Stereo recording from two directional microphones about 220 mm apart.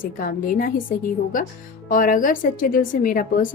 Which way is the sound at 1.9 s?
40° left (ahead or behind).